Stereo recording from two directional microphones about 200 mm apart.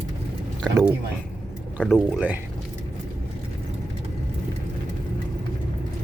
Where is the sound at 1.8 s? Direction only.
Centre (ahead or behind).